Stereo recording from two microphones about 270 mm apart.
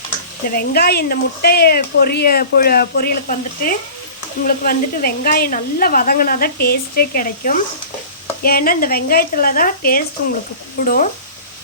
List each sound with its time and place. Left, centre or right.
0.4 s speech: left